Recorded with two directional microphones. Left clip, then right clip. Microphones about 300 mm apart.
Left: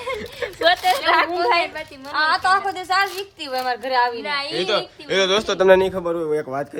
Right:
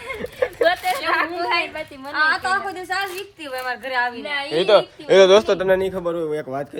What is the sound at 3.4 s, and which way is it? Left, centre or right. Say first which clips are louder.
Speech: left 4 dB; left.